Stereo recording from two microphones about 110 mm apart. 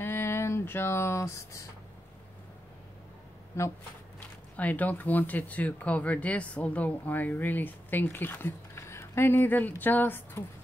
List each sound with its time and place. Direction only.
0.0 s a sound: 20° left (ahead or behind)
3.6 s speech: 25° left (ahead or behind)
4.6 s speech: 15° left (ahead or behind)